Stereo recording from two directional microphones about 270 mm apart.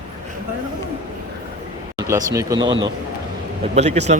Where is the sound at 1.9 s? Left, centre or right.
Centre.